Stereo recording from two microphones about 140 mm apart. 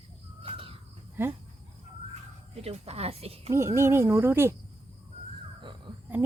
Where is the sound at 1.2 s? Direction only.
15° right (ahead or behind).